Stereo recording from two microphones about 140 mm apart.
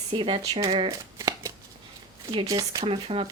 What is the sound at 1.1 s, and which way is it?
Shuffling cards, 25° right (ahead or behind).